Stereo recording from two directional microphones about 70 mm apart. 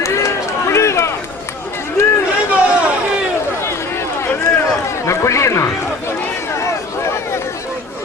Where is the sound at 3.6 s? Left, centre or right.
Left.